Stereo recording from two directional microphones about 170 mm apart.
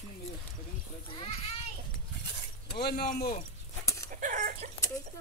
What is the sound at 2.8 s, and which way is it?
Speech, 65° left (ahead or behind).